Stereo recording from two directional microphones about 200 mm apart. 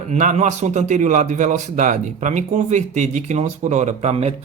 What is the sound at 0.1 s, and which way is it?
A man's voice, 35° right (ahead or behind).